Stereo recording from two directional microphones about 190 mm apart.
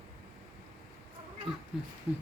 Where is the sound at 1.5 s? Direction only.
30° right (ahead or behind).